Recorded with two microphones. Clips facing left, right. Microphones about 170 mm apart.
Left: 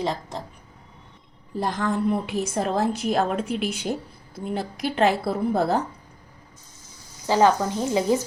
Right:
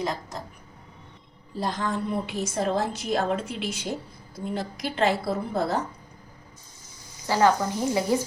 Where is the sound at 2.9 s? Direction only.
60° left (ahead or behind).